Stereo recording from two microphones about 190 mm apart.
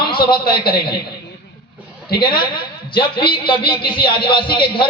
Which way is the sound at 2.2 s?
25° left (ahead or behind).